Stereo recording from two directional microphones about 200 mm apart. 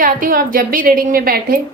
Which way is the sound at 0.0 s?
45° right (ahead or behind).